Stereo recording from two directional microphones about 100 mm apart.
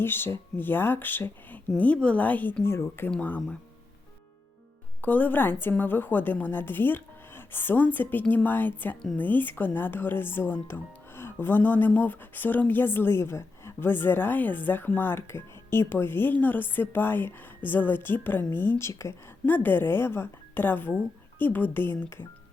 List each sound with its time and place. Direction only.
0.0 s speech: 20° left (ahead or behind)
5.0 s speech: 15° left (ahead or behind)